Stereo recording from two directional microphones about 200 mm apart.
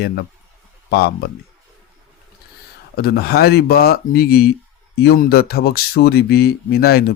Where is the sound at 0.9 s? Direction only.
50° left (ahead or behind).